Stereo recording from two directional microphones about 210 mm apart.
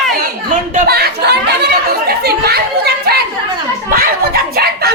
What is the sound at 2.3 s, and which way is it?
Chatter, 50° right (ahead or behind).